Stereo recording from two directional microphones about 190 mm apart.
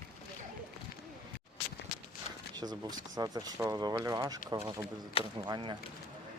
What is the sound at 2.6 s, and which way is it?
Speech, 20° right (ahead or behind).